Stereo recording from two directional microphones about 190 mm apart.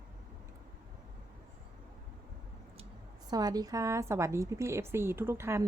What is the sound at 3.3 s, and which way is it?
A woman's voice, 20° right (ahead or behind).